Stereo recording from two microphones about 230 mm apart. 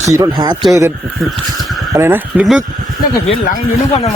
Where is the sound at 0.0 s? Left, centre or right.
Centre.